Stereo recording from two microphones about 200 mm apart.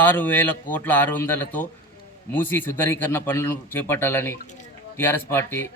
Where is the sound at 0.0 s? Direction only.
10° left (ahead or behind).